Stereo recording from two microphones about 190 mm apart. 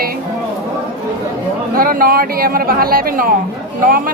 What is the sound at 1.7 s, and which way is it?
Speech, 50° right (ahead or behind).